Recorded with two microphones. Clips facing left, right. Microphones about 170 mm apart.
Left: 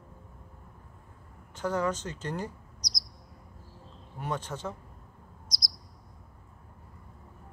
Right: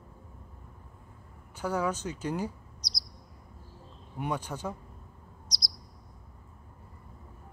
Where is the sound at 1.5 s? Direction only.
10° right (ahead or behind).